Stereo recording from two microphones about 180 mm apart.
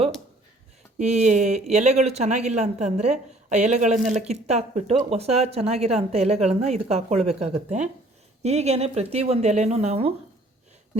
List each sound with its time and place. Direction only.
0.9 s speech: 40° right (ahead or behind)